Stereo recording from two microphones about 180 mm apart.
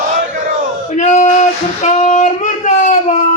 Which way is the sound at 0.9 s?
40° left (ahead or behind).